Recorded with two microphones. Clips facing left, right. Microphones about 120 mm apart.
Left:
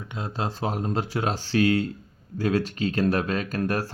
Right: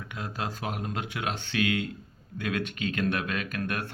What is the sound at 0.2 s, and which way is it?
Speech, 30° left (ahead or behind).